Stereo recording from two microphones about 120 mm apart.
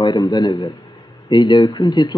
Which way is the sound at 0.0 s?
35° left (ahead or behind).